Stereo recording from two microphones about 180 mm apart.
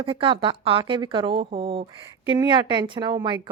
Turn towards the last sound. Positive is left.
turn(degrees=-25)  # may be behind; listen again after turning